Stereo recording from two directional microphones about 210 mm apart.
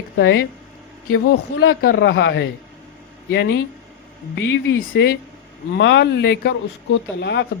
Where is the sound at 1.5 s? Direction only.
50° left (ahead or behind).